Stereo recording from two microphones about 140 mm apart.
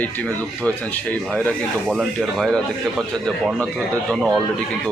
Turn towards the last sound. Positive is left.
turn(degrees=5)  # may be behind; listen again after turning